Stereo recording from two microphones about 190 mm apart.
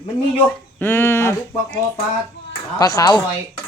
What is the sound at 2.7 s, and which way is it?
Speech, 20° left (ahead or behind).